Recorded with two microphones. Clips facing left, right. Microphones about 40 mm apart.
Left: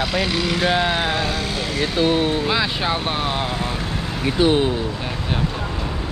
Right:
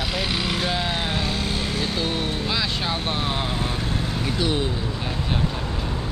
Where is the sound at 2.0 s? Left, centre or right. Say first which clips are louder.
Left 7 dB; left.